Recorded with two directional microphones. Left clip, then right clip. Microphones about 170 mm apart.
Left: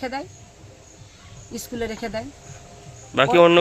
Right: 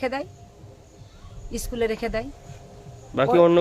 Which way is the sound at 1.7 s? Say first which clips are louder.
Right 3 dB; 35° right (ahead or behind).